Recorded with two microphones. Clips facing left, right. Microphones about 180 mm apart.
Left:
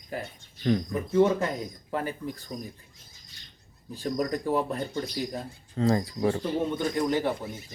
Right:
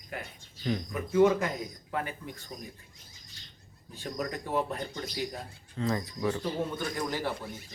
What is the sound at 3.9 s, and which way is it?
Speech, 35° left (ahead or behind).